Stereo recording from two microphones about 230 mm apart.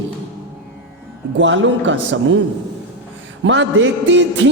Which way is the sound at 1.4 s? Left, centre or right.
Right.